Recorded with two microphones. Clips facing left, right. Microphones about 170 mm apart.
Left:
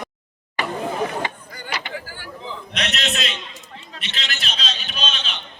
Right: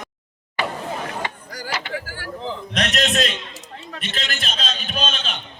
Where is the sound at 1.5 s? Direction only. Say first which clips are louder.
Right 2 dB; 85° right.